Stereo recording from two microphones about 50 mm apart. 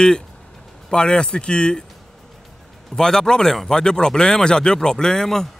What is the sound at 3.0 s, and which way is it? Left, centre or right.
A man's voice, centre.